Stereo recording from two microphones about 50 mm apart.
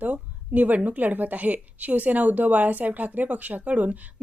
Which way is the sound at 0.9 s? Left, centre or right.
Right.